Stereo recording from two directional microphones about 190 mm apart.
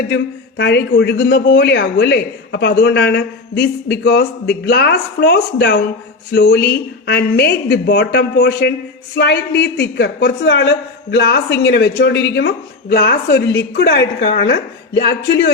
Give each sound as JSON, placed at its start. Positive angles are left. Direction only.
{"t": 0.1, "sound": "a woman's voice", "side_deg": 60}